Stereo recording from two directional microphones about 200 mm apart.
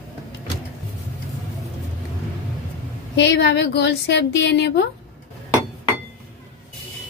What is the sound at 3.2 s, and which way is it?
A woman's voice, 60° left (ahead or behind).